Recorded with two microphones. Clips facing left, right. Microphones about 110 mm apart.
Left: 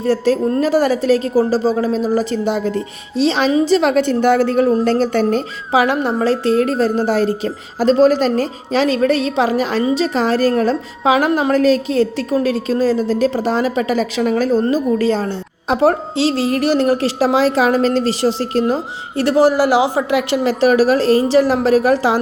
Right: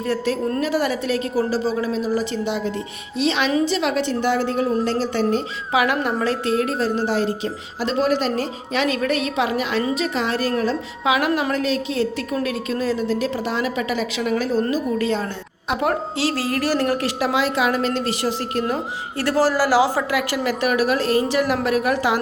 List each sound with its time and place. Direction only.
0.0 s a woman's voice: 35° left (ahead or behind); by 5.4 s 50° left (ahead or behind)
5.7 s a woman's voice: 30° left (ahead or behind)